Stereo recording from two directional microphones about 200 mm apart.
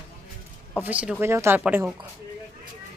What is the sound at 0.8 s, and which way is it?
Speech, 5° right (ahead or behind).